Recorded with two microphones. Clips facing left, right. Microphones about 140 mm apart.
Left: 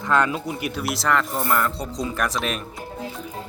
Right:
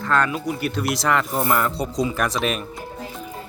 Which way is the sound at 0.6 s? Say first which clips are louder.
Right 3 dB; 10° left (ahead or behind).